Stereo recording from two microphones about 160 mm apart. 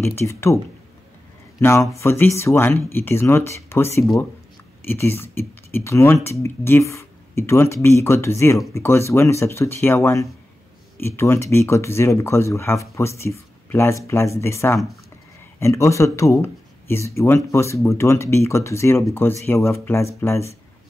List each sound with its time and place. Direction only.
0.0 s speech: 15° left (ahead or behind)
1.6 s speech: 15° left (ahead or behind)